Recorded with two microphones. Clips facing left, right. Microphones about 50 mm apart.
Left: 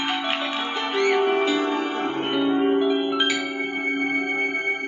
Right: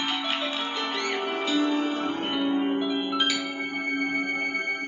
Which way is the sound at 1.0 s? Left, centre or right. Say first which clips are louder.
Left 13 dB; left.